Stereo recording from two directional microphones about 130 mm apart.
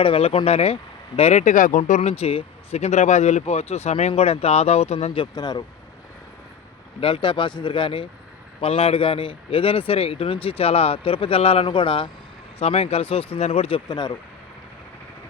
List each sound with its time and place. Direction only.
0.0 s speech: 45° left (ahead or behind); by 1.8 s 80° left
2.0 s speech: 50° left (ahead or behind)
5.1 s speech: 35° left (ahead or behind)
7.0 s speech: 40° left (ahead or behind)
12.5 s speech: 50° left (ahead or behind)
13.8 s speech: 35° left (ahead or behind)